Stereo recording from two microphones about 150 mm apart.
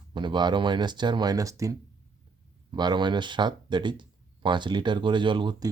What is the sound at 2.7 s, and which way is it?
Speech, 30° right (ahead or behind).